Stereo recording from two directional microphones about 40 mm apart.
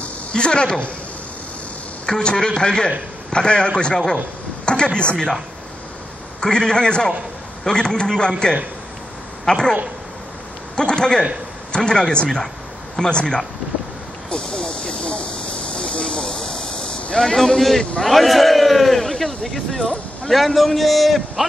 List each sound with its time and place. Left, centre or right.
0.3 s a man's voice: left
2.0 s a man's voice: centre
6.4 s a man's voice: centre
10.8 s a man's voice: left
13.0 s a man's voice: left
14.3 s snake: centre
15.7 s a sound: centre
17.4 s a man's voice: centre